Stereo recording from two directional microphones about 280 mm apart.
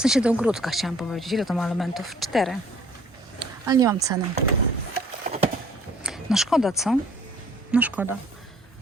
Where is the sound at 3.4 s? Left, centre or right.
Centre.